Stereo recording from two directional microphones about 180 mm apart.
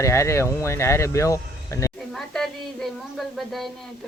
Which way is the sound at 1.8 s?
15° left (ahead or behind).